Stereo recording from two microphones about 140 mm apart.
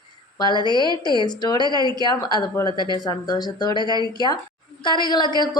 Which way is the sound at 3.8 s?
30° right (ahead or behind).